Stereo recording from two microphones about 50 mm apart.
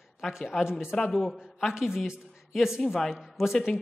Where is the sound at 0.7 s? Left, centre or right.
Centre.